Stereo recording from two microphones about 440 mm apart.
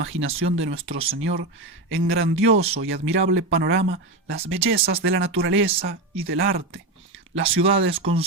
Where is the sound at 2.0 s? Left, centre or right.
Right.